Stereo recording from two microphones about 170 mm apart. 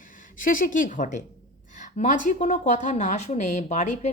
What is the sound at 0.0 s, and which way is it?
A woman's voice, 50° left (ahead or behind).